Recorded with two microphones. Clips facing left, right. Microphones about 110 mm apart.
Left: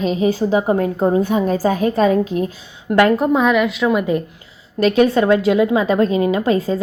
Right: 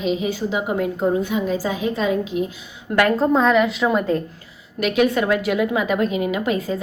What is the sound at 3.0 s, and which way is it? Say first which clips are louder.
A woman's voice: left 3 dB; 20° left (ahead or behind).